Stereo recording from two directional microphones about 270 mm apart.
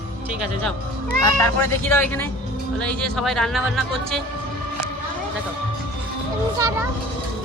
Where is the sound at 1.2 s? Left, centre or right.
Centre.